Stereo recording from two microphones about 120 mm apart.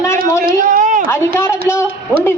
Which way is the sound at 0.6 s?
90° right.